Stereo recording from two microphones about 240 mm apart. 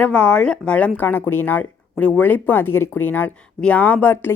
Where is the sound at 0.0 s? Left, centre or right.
Centre.